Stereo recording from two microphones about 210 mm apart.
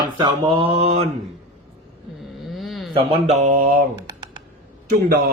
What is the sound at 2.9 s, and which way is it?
Speech, 25° right (ahead or behind).